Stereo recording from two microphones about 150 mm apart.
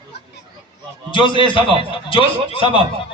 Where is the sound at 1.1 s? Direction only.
35° left (ahead or behind).